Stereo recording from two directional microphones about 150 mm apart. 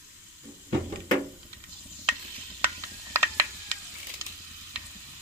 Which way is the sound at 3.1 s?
15° right (ahead or behind).